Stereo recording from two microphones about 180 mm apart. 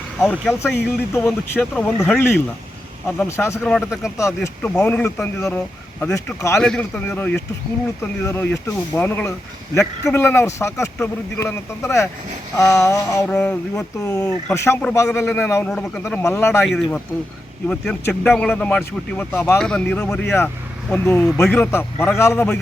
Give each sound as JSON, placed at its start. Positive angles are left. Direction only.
{"t": 0.2, "sound": "speech", "side_deg": 5}
{"t": 6.6, "sound": "speech", "side_deg": 5}
{"t": 16.6, "sound": "speech", "side_deg": 0}